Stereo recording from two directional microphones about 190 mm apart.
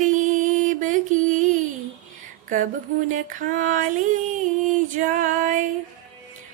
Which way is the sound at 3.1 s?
40° right (ahead or behind).